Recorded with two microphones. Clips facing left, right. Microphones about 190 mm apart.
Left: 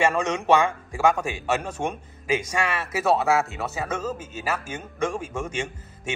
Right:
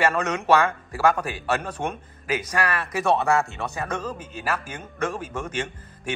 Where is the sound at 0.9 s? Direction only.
15° left (ahead or behind).